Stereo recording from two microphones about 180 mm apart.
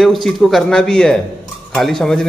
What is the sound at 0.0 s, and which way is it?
Speech, centre (ahead or behind).